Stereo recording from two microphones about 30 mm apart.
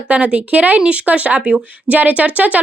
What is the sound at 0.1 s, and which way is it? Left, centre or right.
A woman's voice, right.